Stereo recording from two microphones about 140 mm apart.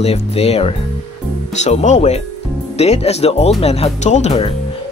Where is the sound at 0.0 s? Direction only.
45° left (ahead or behind).